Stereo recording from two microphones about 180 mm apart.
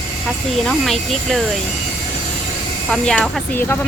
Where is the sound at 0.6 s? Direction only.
Centre (ahead or behind).